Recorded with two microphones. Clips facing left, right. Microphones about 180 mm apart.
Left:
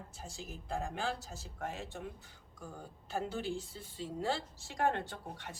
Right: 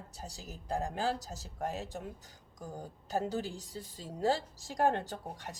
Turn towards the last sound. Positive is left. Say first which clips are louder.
# right 3 dB
turn(degrees=-40)  # may be behind; listen again after turning